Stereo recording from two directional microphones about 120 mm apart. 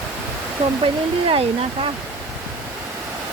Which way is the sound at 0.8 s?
50° right (ahead or behind).